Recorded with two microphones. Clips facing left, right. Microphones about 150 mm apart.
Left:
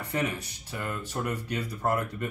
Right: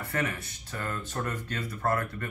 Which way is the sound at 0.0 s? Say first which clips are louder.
Left 2 dB; 15° left (ahead or behind).